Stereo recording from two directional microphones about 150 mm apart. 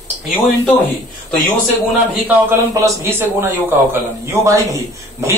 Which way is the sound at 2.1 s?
10° right (ahead or behind).